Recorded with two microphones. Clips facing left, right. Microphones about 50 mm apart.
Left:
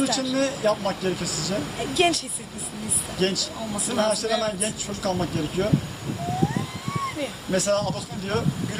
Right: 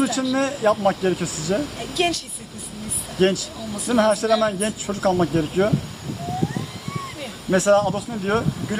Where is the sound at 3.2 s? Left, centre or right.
Right.